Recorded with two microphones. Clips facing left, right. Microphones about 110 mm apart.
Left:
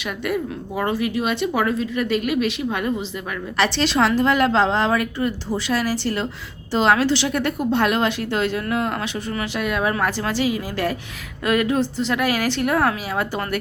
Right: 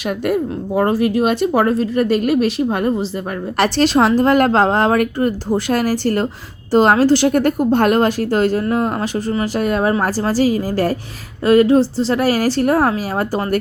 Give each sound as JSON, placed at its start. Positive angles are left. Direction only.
{"t": 0.0, "sound": "speech", "side_deg": -45}